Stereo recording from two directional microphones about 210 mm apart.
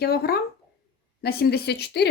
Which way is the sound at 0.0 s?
45° left (ahead or behind).